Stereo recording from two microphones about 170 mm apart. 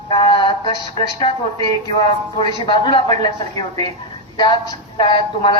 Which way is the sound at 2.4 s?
25° left (ahead or behind).